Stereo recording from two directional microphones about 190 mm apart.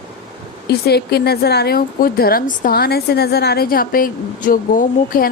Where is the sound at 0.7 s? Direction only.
55° left (ahead or behind).